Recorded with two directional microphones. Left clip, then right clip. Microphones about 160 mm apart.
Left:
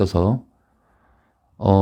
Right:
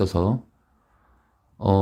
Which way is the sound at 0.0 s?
30° left (ahead or behind).